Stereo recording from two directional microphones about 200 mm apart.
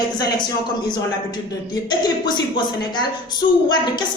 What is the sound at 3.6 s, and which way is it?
Speech, 20° left (ahead or behind).